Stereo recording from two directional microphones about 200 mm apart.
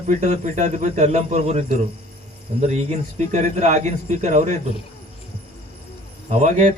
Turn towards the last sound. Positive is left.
turn(degrees=-35)  # may be behind; listen again after turning